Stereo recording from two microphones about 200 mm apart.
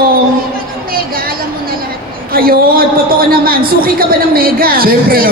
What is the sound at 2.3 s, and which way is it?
A man's voice, 45° right (ahead or behind).